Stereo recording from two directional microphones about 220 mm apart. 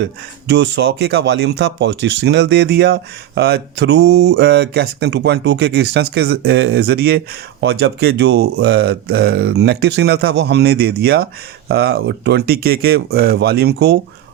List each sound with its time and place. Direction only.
0.0 s speech: 50° right (ahead or behind)